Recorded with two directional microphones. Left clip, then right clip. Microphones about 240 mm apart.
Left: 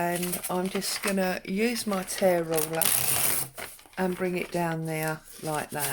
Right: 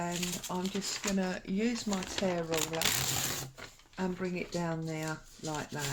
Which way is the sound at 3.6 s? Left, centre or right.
Left.